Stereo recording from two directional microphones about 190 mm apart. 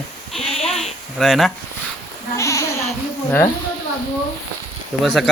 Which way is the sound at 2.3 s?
15° left (ahead or behind).